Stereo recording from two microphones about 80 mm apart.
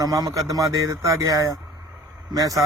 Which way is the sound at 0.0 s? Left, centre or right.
Right.